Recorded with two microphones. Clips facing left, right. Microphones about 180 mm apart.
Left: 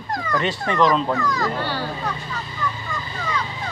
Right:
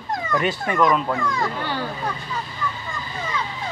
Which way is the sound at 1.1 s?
25° right (ahead or behind).